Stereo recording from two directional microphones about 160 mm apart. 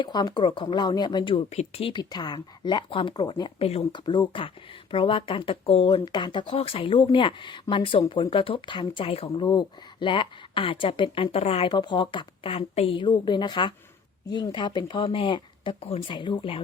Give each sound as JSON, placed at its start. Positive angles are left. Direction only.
{"t": 0.0, "sound": "speech", "side_deg": 30}
{"t": 3.7, "sound": "speech", "side_deg": 40}
{"t": 4.0, "sound": "speech", "side_deg": 25}